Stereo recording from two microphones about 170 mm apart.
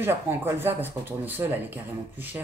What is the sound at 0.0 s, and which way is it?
Speech, 10° right (ahead or behind).